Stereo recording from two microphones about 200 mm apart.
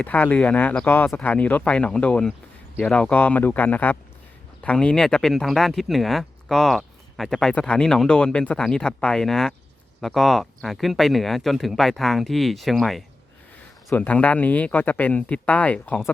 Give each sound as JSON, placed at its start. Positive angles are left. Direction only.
{"t": 0.0, "sound": "speech", "side_deg": 5}